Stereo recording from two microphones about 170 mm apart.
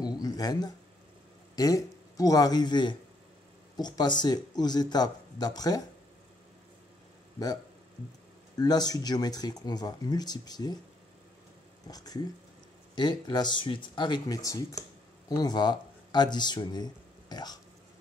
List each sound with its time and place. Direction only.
0.0 s a sound: 25° left (ahead or behind)
1.5 s a man's voice: 20° left (ahead or behind)
8.5 s speech: 25° left (ahead or behind)
11.9 s speech: 20° left (ahead or behind)